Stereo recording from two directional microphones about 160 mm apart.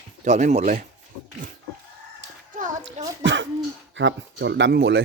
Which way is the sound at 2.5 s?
50° right (ahead or behind).